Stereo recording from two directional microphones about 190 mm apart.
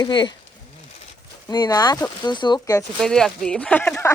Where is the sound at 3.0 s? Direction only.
Centre (ahead or behind).